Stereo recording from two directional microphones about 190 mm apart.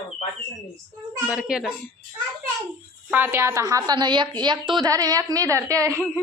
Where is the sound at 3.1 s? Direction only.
10° right (ahead or behind).